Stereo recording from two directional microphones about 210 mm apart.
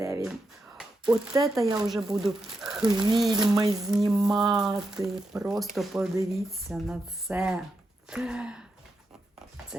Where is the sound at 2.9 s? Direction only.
20° right (ahead or behind).